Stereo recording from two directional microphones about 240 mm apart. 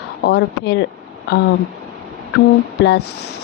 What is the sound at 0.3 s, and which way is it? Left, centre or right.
Speech, left.